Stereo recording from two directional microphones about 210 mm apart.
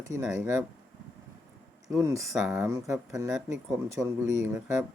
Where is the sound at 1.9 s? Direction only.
15° right (ahead or behind).